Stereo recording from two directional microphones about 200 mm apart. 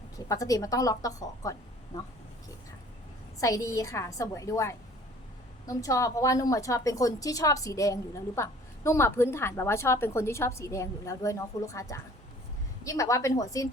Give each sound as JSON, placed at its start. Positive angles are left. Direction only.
{"t": 0.3, "sound": "a woman's voice", "side_deg": 15}
{"t": 3.4, "sound": "a woman's voice", "side_deg": 15}